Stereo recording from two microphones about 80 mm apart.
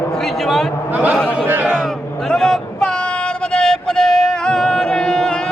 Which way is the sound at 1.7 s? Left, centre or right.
Centre.